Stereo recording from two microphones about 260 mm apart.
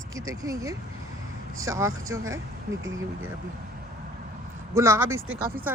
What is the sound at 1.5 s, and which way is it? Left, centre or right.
Speech, right.